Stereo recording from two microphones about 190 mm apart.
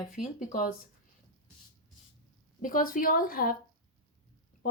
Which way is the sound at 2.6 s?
45° left (ahead or behind).